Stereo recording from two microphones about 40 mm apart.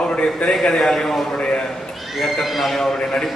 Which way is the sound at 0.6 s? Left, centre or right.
Centre.